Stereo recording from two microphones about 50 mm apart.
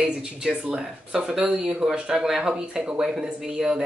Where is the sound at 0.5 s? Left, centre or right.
Right.